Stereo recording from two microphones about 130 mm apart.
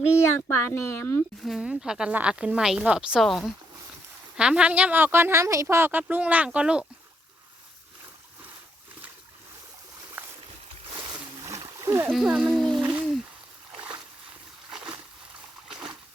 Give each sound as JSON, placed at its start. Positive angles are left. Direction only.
{"t": 0.2, "sound": "speech", "side_deg": 20}
{"t": 1.5, "sound": "speech", "side_deg": -5}
{"t": 11.9, "sound": "speech", "side_deg": -20}
{"t": 12.1, "sound": "a child's voice", "side_deg": -5}
{"t": 14.7, "sound": "a sound", "side_deg": -5}